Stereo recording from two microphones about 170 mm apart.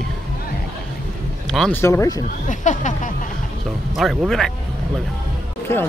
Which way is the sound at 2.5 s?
45° left (ahead or behind).